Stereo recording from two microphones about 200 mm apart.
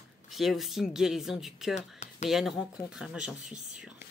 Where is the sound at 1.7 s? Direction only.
35° left (ahead or behind).